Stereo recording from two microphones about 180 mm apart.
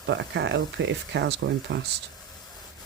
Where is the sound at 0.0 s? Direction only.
80° right.